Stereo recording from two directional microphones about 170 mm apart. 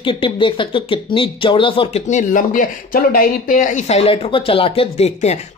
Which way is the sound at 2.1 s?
50° left (ahead or behind).